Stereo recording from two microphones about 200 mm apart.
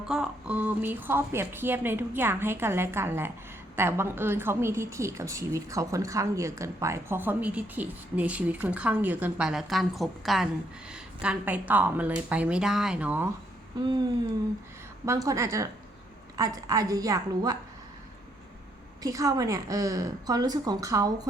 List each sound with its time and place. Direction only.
0.1 s a woman's voice: 5° right (ahead or behind)
15.0 s a woman's voice: 15° right (ahead or behind)
19.0 s a woman's voice: 15° right (ahead or behind)